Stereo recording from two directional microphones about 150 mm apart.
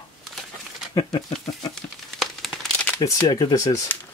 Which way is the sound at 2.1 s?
5° left (ahead or behind).